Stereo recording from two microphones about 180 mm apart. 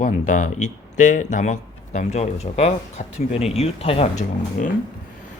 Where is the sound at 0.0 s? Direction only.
45° left (ahead or behind).